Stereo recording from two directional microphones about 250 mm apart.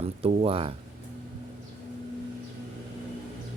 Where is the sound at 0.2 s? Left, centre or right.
Right.